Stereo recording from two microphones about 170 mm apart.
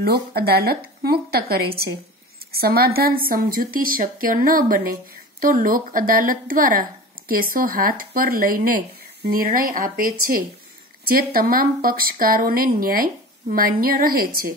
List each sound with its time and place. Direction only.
0.0 s a woman's voice: 65° right (ahead or behind)